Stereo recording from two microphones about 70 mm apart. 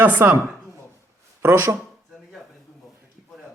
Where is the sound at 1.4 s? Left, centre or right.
Right.